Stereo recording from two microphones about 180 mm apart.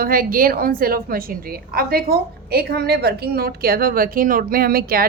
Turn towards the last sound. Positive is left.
turn(degrees=-55)  # may be behind; listen again after turning